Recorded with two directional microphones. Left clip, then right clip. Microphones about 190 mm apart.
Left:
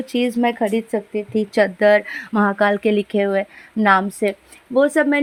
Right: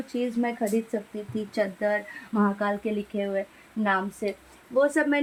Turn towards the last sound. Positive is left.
turn(degrees=35)  # may be behind; listen again after turning